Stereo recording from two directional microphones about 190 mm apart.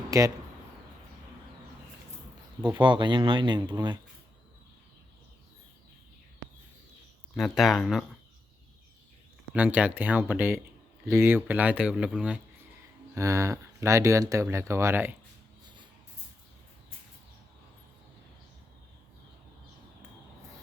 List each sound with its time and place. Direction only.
0.1 s speech: 15° right (ahead or behind)
2.6 s speech: 25° right (ahead or behind)
7.3 s speech: centre (ahead or behind)
9.6 s speech: 10° right (ahead or behind)
13.1 s speech: 15° right (ahead or behind)